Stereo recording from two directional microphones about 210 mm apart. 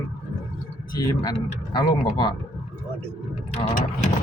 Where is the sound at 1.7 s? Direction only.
20° left (ahead or behind).